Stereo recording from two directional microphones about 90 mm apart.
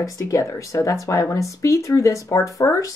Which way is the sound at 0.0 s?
35° left (ahead or behind).